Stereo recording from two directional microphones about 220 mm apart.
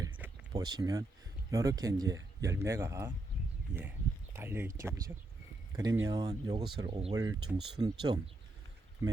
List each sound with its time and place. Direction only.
0.0 s a sound: 15° right (ahead or behind)
1.5 s speech: 15° right (ahead or behind)
4.4 s speech: 10° right (ahead or behind)